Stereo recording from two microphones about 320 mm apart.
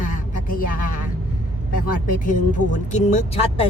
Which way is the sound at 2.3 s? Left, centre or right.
Left.